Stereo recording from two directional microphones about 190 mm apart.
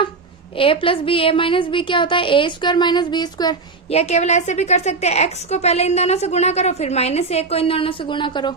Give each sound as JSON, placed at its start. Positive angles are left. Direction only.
{"t": 0.5, "sound": "a woman's voice", "side_deg": 30}